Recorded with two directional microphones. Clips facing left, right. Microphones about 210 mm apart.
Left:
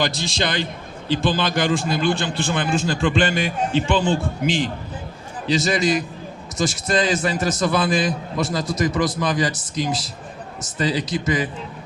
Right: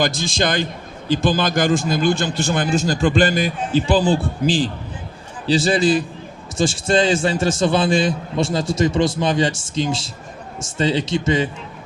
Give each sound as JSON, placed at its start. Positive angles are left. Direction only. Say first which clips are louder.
{"t": 0.0, "sound": "a man's voice", "louder": "right 3 dB", "side_deg": -45}